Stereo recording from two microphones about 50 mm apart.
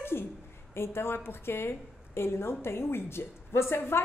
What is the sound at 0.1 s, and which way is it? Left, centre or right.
A woman's voice, left.